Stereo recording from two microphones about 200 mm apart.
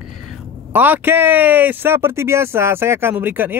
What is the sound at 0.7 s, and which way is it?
Speech, 10° right (ahead or behind).